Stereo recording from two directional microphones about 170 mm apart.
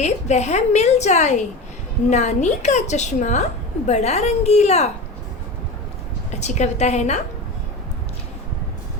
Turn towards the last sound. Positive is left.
turn(degrees=40)  # may be behind; listen again after turning